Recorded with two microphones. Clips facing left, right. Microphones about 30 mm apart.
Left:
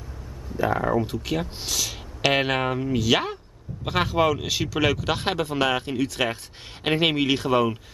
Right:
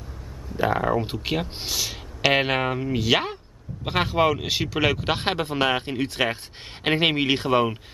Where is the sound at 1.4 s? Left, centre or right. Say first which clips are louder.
Even; centre.